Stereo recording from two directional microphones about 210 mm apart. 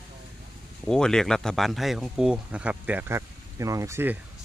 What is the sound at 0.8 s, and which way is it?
Speech, 5° left (ahead or behind).